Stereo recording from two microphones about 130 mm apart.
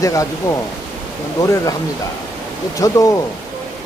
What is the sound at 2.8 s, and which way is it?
Speech, 25° left (ahead or behind).